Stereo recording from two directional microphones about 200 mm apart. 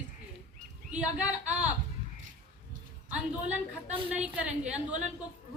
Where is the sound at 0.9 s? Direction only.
5° right (ahead or behind).